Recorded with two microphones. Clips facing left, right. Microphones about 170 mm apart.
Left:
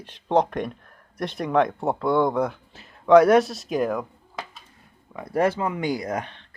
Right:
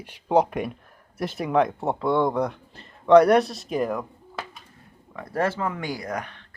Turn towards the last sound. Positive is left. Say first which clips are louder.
# left 3 dB
turn(degrees=25)  # may be behind; listen again after turning